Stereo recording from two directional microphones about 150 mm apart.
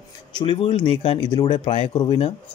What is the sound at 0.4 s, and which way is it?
Speech, 35° left (ahead or behind).